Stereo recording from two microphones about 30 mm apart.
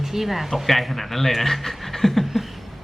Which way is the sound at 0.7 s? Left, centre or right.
Centre.